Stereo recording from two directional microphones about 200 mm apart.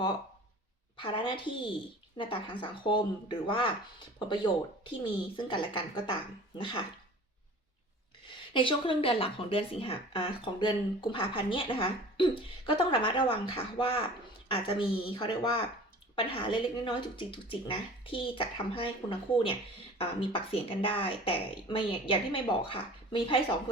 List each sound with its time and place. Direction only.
0.9 s speech: 25° left (ahead or behind)
5.4 s speech: 25° left (ahead or behind)
8.5 s speech: 25° left (ahead or behind)